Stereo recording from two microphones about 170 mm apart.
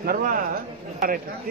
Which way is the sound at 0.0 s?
55° right (ahead or behind).